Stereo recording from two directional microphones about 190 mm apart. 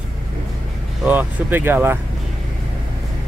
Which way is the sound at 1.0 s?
10° right (ahead or behind).